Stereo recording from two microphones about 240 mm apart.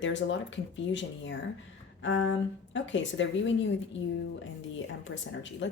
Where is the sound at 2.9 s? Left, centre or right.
Left.